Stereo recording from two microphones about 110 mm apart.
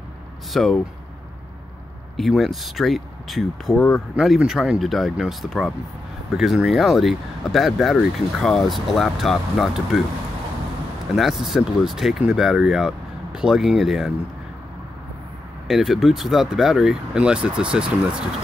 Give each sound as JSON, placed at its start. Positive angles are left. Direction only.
{"t": 0.5, "sound": "speech", "side_deg": 5}
{"t": 2.1, "sound": "speech", "side_deg": 0}
{"t": 11.1, "sound": "speech", "side_deg": 0}
{"t": 15.7, "sound": "speech", "side_deg": 0}